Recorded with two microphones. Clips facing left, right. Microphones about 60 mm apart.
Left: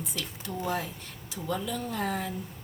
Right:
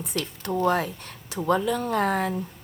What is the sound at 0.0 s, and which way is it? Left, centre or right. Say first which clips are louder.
A woman's voice: right 6 dB; right.